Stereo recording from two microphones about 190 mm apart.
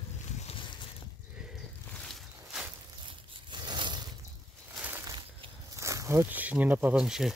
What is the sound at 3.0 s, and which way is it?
Crushing, 25° right (ahead or behind).